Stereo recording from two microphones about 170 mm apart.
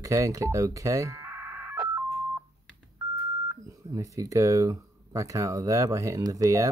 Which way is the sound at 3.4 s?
20° right (ahead or behind).